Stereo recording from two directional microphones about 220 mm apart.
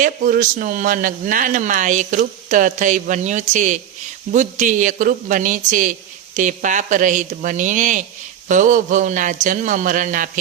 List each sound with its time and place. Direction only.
0.0 s a man's voice: 40° right (ahead or behind)